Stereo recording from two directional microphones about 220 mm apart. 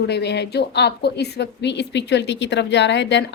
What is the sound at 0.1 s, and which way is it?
A woman's voice, 50° left (ahead or behind).